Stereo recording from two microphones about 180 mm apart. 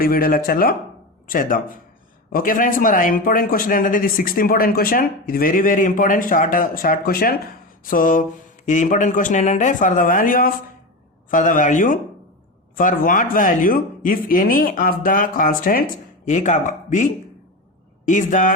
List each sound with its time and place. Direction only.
0.0 s speech: 55° left (ahead or behind)